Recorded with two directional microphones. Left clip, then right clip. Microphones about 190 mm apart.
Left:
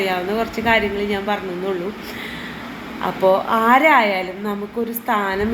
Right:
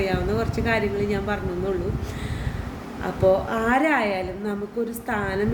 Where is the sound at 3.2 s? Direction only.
10° right (ahead or behind).